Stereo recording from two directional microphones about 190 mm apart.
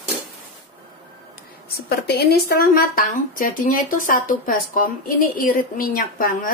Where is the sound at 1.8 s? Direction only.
55° left (ahead or behind).